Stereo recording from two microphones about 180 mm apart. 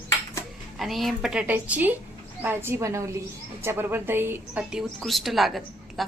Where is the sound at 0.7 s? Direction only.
Centre (ahead or behind).